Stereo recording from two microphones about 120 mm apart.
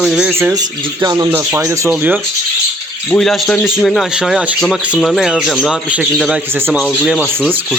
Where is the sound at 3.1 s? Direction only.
5° left (ahead or behind).